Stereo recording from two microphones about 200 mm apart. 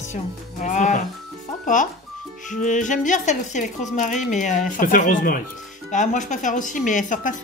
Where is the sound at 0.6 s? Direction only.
40° left (ahead or behind).